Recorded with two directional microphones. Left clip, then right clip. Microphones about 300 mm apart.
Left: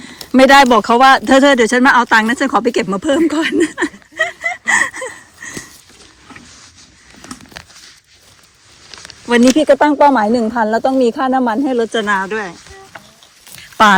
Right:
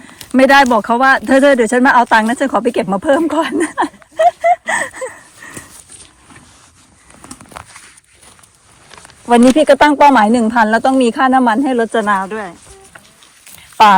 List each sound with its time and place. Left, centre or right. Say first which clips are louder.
0.0 s speech: left 1 dB; centre
9.7 s speech: right 2 dB; right; by 12.5 s centre